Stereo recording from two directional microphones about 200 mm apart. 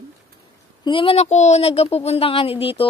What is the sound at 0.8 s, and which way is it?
Speech, 25° left (ahead or behind).